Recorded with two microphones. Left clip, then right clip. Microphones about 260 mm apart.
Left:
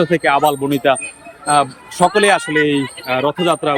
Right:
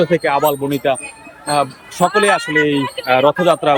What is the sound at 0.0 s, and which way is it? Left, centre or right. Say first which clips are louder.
Speech: left 1 dB; centre.